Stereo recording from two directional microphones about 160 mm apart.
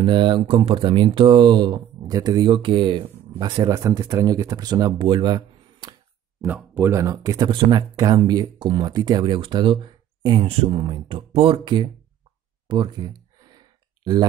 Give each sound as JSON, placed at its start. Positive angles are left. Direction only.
{"t": 0.0, "sound": "speech", "side_deg": -30}
{"t": 6.4, "sound": "speech", "side_deg": -10}
{"t": 13.4, "sound": "sigh", "side_deg": -25}